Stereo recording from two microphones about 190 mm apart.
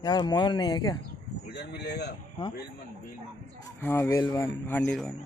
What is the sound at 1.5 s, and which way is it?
Speech, 60° left (ahead or behind).